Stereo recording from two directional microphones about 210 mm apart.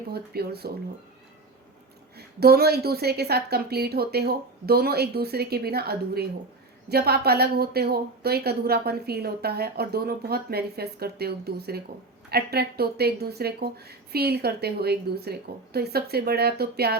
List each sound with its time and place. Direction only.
0.1 s a woman's voice: 50° right (ahead or behind)
2.1 s a woman's voice: 50° right (ahead or behind)